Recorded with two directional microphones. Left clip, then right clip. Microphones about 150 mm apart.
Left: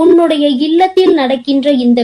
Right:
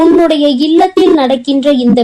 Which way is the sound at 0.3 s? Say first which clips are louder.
Right 2 dB; 40° right (ahead or behind).